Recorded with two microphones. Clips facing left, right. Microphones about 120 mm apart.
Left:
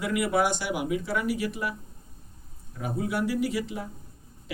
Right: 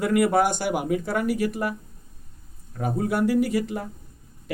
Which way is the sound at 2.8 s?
45° right (ahead or behind).